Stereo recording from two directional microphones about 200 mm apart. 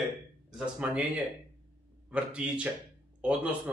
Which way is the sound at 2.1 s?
5° right (ahead or behind).